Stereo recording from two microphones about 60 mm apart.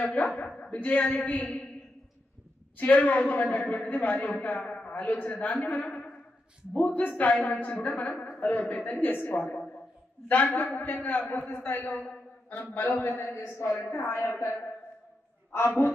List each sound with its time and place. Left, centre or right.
0.0 s a man's voice: left
2.8 s a man's voice: left
12.7 s a man's voice: left